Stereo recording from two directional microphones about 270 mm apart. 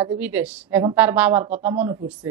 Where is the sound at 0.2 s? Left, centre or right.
Centre.